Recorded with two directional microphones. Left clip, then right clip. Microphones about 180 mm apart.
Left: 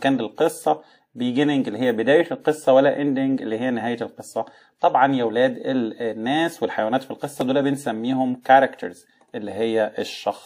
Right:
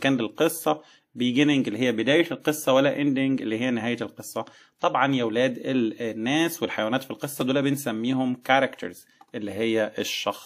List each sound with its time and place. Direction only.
0.0 s speech: 30° right (ahead or behind)